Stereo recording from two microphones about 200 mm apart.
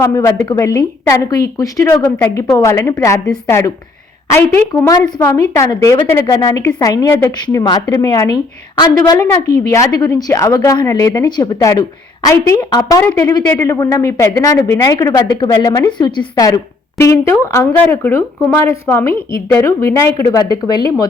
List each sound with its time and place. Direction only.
0.0 s a woman's voice: 15° left (ahead or behind)